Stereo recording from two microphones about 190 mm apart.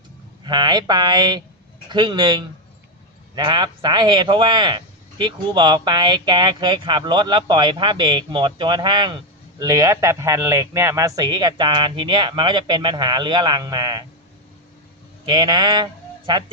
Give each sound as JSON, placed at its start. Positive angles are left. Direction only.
{"t": 0.4, "sound": "speech", "side_deg": -25}
{"t": 15.3, "sound": "speech", "side_deg": -25}